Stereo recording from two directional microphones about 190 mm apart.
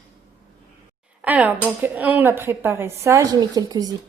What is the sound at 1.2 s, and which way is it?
Speech, 10° right (ahead or behind).